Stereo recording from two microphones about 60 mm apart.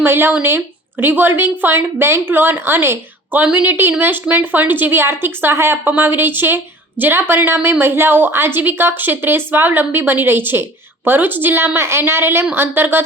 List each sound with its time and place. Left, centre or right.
0.0 s a woman's voice: right
3.4 s a woman's voice: right